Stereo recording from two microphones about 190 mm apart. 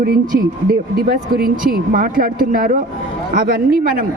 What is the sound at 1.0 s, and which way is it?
Speech, 50° right (ahead or behind).